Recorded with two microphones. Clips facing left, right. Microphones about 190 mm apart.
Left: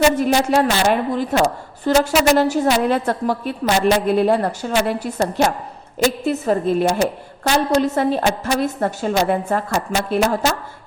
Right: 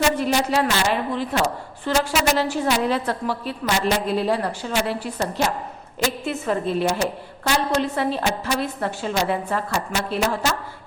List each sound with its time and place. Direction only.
0.2 s a woman's voice: 50° left (ahead or behind)